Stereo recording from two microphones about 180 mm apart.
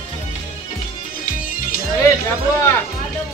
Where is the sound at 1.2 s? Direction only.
50° left (ahead or behind).